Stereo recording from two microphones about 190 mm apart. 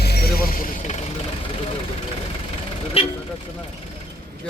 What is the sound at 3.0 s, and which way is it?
Speech, 30° left (ahead or behind).